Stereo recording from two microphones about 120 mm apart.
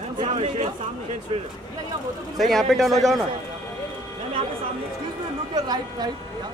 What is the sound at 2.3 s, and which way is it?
Speech, centre (ahead or behind).